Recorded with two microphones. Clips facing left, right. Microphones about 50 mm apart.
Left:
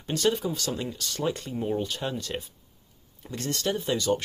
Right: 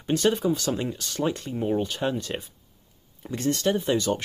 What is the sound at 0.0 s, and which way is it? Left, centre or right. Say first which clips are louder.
Speech: right 3 dB; centre.